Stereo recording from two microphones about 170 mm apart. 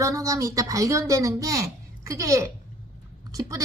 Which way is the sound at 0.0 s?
20° right (ahead or behind).